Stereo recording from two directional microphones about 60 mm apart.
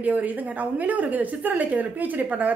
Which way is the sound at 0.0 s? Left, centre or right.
Right.